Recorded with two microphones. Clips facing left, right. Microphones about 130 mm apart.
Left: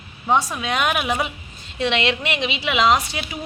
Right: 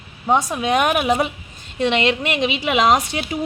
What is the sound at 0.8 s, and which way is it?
A woman's voice, 40° right (ahead or behind).